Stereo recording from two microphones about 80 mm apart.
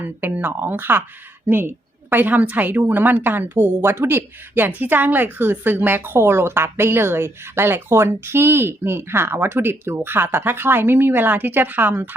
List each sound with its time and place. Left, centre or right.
0.0 s a woman's voice: right